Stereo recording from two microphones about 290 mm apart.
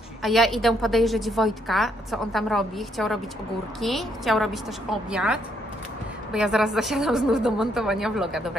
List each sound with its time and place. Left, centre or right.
0.2 s a woman's voice: centre